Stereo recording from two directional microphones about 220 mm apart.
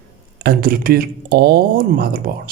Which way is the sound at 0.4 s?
40° right (ahead or behind).